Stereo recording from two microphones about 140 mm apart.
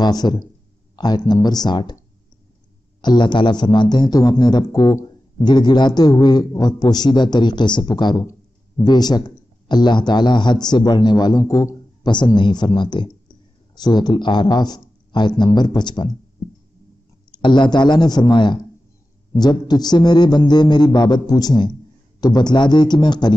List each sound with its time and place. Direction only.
0.0 s speech: 30° left (ahead or behind)
3.0 s a man's voice: 30° left (ahead or behind)
8.3 s a sound: 30° left (ahead or behind)
9.7 s a man's voice: 30° left (ahead or behind)
17.3 s a man's voice: 35° left (ahead or behind)